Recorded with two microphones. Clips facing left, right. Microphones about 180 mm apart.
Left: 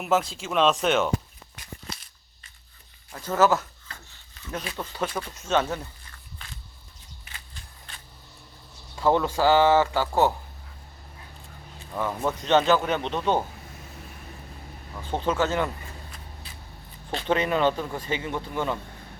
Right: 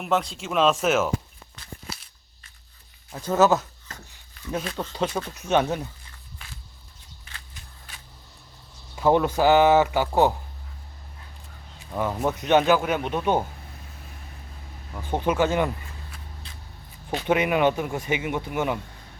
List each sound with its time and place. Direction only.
0.0 s speech: centre (ahead or behind)
3.1 s speech: 15° right (ahead or behind)
4.1 s a sound: 15° right (ahead or behind)
4.8 s speech: 20° right (ahead or behind)
9.0 s speech: 15° right (ahead or behind)
11.9 s speech: 15° right (ahead or behind)
15.0 s speech: 15° right (ahead or behind)
17.1 s speech: 10° right (ahead or behind)